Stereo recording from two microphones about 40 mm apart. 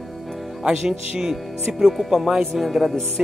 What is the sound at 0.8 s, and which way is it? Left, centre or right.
Speech, centre.